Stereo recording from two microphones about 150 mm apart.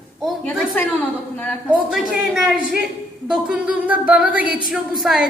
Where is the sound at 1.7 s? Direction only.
5° right (ahead or behind).